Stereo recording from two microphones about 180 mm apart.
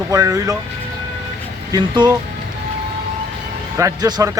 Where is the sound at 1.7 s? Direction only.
25° right (ahead or behind).